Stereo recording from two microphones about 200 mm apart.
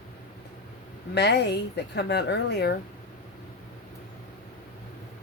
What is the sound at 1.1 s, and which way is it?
A woman's voice, 55° left (ahead or behind).